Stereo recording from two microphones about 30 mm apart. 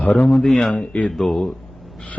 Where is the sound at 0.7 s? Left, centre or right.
Left.